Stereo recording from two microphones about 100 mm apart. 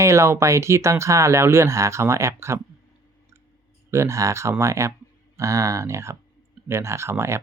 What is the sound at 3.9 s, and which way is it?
Speech, 30° right (ahead or behind).